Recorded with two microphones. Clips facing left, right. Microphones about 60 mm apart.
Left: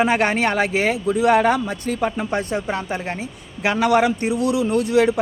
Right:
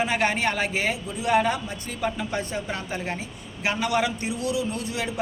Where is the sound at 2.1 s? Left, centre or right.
Left.